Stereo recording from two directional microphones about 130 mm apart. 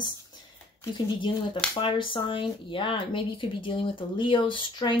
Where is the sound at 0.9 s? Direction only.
35° left (ahead or behind).